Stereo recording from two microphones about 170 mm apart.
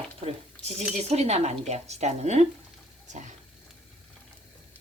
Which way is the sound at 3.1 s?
45° right (ahead or behind).